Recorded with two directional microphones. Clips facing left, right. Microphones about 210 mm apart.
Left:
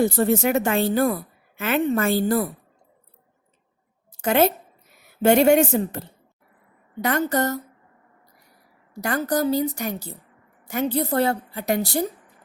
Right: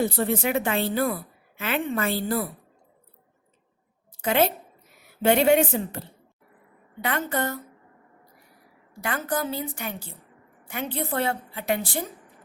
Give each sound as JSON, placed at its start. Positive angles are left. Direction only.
{"t": 0.0, "sound": "a woman's voice", "side_deg": 45}
{"t": 4.2, "sound": "a woman's voice", "side_deg": 45}
{"t": 7.0, "sound": "a woman's voice", "side_deg": 40}
{"t": 9.0, "sound": "a woman's voice", "side_deg": 40}